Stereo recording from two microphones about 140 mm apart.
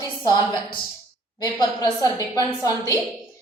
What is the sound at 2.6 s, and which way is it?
Speech, 25° left (ahead or behind).